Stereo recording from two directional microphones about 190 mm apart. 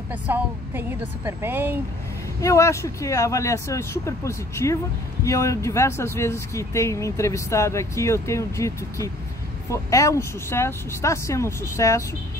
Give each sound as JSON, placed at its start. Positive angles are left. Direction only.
{"t": 0.1, "sound": "speech", "side_deg": -10}
{"t": 2.4, "sound": "speech", "side_deg": 15}